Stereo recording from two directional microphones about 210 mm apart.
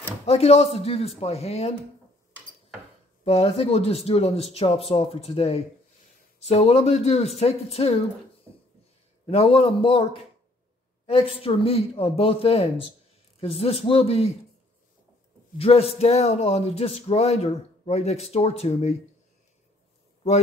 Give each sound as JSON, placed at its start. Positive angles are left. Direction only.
{"t": 0.3, "sound": "speech", "side_deg": 30}
{"t": 3.3, "sound": "speech", "side_deg": 30}
{"t": 9.2, "sound": "speech", "side_deg": 25}
{"t": 11.1, "sound": "speech", "side_deg": 25}
{"t": 15.5, "sound": "speech", "side_deg": 30}